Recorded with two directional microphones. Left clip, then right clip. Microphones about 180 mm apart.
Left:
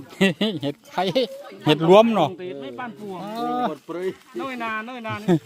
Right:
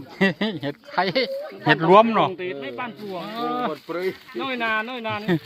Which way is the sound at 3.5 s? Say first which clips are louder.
Left 2 dB; 40° left (ahead or behind).